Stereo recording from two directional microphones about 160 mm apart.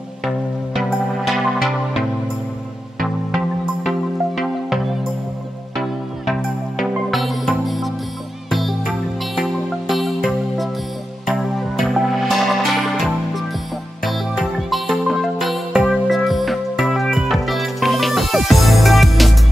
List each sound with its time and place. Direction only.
1.2 s music: centre (ahead or behind)
7.1 s music: centre (ahead or behind)